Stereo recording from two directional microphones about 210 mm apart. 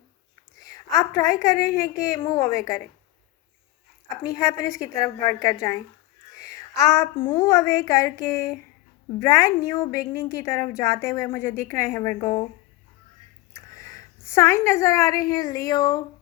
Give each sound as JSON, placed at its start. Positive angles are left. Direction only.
{"t": 0.6, "sound": "a woman's voice", "side_deg": 15}
{"t": 4.4, "sound": "a woman's voice", "side_deg": 15}
{"t": 6.5, "sound": "a sound", "side_deg": 15}
{"t": 7.3, "sound": "a woman's voice", "side_deg": 15}
{"t": 13.5, "sound": "a woman's voice", "side_deg": 15}